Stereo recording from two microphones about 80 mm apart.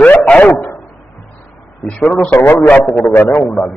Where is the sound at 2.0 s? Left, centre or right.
Centre.